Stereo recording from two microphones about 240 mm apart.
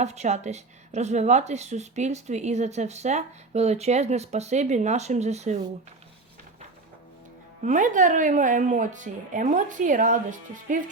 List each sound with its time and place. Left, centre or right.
0.0 s a woman's voice: right
7.6 s a woman's voice: right